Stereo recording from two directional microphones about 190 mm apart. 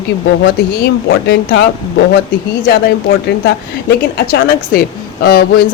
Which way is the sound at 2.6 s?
60° left (ahead or behind).